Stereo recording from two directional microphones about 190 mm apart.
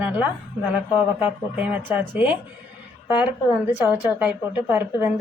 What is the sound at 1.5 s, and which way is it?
Speech, 10° right (ahead or behind).